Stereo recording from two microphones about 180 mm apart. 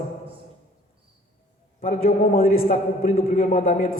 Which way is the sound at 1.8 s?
50° left (ahead or behind).